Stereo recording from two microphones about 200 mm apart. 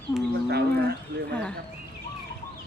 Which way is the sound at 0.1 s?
15° left (ahead or behind).